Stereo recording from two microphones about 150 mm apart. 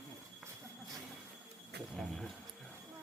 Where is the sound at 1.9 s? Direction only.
5° left (ahead or behind).